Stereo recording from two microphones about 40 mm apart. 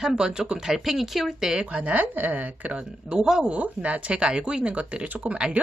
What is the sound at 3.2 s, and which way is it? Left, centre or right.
Speech, centre.